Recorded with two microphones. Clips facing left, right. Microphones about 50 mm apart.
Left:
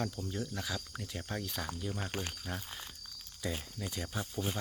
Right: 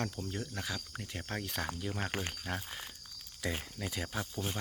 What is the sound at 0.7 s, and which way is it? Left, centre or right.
Speech, right.